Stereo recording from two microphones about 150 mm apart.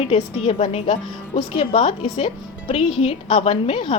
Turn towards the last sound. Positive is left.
turn(degrees=35)  # may be behind; listen again after turning